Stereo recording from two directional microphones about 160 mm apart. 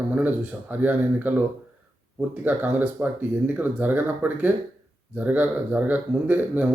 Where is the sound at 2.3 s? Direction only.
10° right (ahead or behind).